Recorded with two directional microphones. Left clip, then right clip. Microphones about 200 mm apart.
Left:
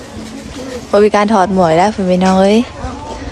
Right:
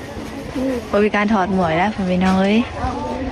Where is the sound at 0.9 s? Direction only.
25° left (ahead or behind).